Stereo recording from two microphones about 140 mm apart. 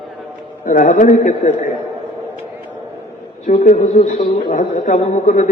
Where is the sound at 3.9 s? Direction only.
55° left (ahead or behind).